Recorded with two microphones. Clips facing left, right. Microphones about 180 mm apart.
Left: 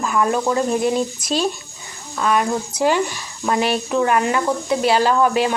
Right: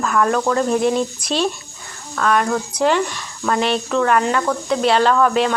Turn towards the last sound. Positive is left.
turn(degrees=5)  # may be behind; listen again after turning